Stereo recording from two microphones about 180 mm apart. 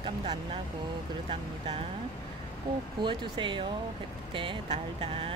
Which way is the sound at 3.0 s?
25° right (ahead or behind).